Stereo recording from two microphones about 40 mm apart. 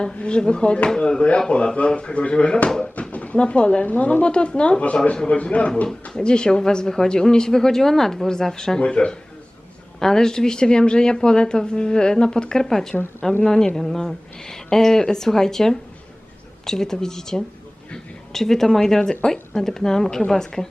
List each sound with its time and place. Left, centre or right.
0.0 s speech: left
0.9 s speech: centre
1.5 s speech: left
2.1 s speech: left
2.6 s speech: centre
3.0 s speech: left
3.8 s speech: left
5.4 s speech: left
6.1 s speech: left
10.0 s speech: centre